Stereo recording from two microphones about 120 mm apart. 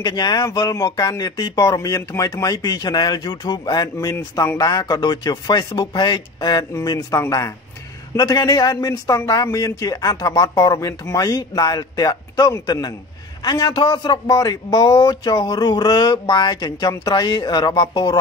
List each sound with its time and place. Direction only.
0.0 s speech: 35° left (ahead or behind)